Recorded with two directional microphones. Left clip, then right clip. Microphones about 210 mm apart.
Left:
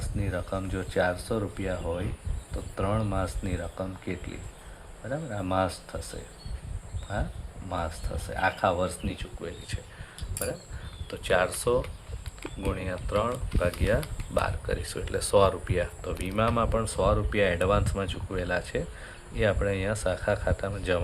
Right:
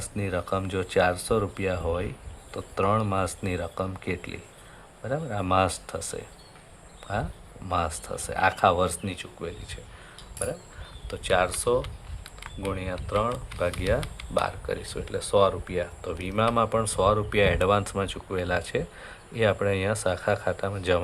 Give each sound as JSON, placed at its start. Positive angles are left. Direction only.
{"t": 0.0, "sound": "speech", "side_deg": -25}
{"t": 10.4, "sound": "speech", "side_deg": -15}